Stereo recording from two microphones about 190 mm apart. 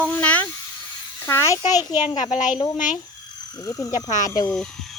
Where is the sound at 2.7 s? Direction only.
45° left (ahead or behind).